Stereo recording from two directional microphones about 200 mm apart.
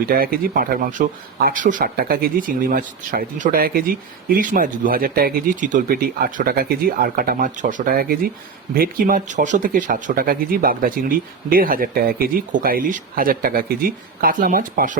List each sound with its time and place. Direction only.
0.0 s speech: 45° right (ahead or behind)